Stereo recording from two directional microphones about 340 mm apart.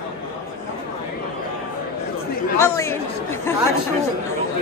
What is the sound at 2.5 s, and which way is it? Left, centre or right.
Speech, centre.